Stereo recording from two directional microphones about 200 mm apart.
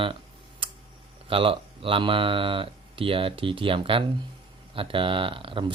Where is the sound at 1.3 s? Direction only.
25° right (ahead or behind).